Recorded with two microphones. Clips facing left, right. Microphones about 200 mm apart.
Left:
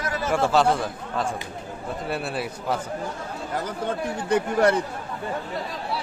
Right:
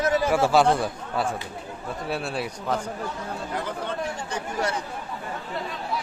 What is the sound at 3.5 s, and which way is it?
Speech, 45° left (ahead or behind).